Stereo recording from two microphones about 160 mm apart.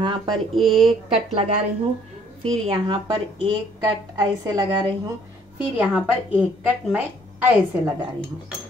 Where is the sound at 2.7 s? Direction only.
25° right (ahead or behind).